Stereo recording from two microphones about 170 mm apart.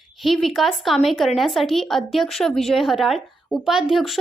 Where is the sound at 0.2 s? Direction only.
Centre (ahead or behind).